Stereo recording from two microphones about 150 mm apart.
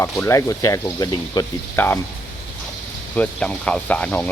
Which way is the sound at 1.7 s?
15° left (ahead or behind).